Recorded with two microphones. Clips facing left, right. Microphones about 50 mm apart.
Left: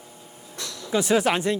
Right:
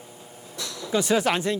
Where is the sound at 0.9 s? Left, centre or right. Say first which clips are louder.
Left 1 dB; centre.